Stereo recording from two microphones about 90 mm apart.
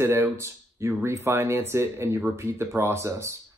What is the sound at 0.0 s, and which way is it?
Speech, 25° right (ahead or behind).